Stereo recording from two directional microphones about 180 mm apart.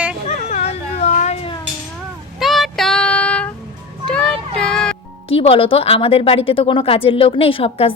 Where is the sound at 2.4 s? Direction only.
Centre (ahead or behind).